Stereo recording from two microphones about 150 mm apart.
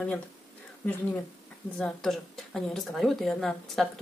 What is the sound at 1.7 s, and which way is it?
A woman's voice, 5° left (ahead or behind).